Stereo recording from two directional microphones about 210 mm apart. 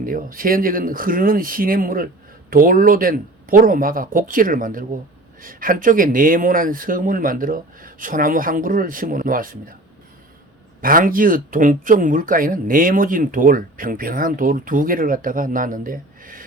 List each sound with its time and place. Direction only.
0.0 s speech: 40° right (ahead or behind)
10.8 s speech: 40° right (ahead or behind)